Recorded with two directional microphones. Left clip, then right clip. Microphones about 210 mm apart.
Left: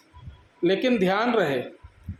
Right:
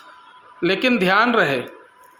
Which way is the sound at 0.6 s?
15° right (ahead or behind).